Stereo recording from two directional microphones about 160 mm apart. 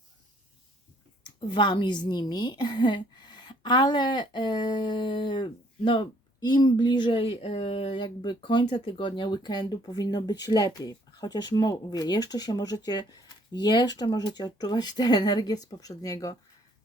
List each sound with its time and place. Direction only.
1.2 s a woman's voice: 30° left (ahead or behind)